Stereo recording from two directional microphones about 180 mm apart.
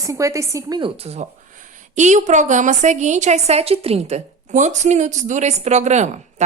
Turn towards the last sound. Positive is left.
turn(degrees=-40)  # may be behind; listen again after turning